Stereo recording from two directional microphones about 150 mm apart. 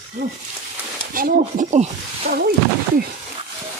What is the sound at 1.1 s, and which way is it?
Speech, 55° right (ahead or behind).